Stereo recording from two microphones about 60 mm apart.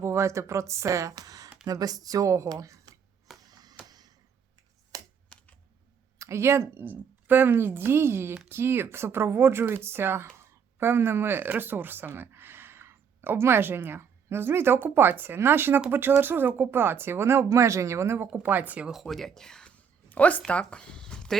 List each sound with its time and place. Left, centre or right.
0.0 s a woman's voice: right
3.4 s a sound: right
4.9 s typing: right
5.3 s typing: left
6.1 s speech: right
6.7 s speech: right
18.3 s speech: right
18.9 s speech: centre
20.1 s speech: left